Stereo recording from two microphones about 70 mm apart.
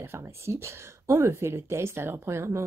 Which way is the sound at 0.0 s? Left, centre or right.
Right.